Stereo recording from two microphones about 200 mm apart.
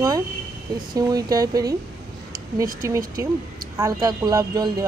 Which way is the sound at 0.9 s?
20° right (ahead or behind).